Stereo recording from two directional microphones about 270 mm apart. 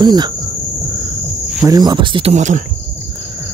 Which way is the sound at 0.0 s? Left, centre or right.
Centre.